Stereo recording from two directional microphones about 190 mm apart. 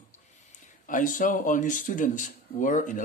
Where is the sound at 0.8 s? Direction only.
45° left (ahead or behind).